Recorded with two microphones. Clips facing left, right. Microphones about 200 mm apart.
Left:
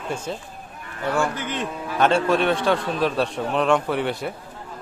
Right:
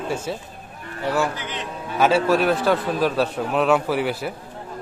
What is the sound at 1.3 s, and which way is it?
Speech, 50° left (ahead or behind).